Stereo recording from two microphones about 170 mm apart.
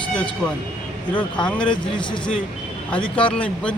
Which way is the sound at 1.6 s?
30° left (ahead or behind).